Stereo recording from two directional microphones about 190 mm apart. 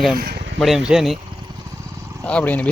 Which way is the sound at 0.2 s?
55° right (ahead or behind).